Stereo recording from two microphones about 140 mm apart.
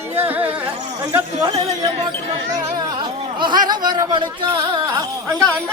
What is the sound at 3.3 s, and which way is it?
Speech, 30° right (ahead or behind).